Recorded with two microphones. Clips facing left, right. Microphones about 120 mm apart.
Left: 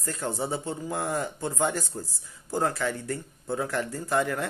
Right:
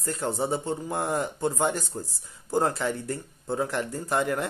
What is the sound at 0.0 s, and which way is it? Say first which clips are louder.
Speech: right 3 dB; 30° right (ahead or behind).